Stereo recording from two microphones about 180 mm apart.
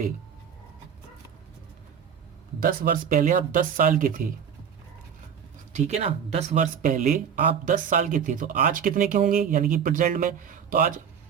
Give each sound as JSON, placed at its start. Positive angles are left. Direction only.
{"t": 2.6, "sound": "speech", "side_deg": -50}
{"t": 5.7, "sound": "speech", "side_deg": -35}